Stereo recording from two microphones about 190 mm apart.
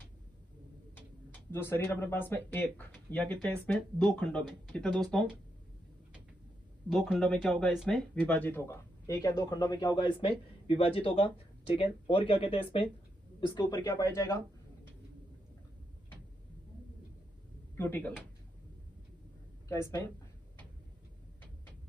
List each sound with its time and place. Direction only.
1.5 s speech: 10° left (ahead or behind)
6.9 s speech: centre (ahead or behind); by 12.8 s 30° left (ahead or behind)
13.6 s speech: 15° left (ahead or behind)
17.7 s speech: 10° left (ahead or behind)
19.7 s speech: 15° left (ahead or behind)